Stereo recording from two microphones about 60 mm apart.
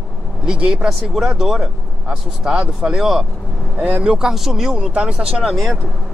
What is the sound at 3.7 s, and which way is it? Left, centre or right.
Speech, right.